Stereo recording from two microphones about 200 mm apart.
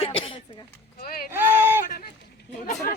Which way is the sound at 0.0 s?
25° left (ahead or behind).